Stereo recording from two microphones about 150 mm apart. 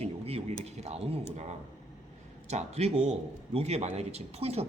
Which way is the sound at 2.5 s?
45° right (ahead or behind).